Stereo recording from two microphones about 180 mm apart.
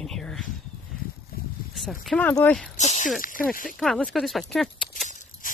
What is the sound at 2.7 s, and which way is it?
Speech, 40° left (ahead or behind).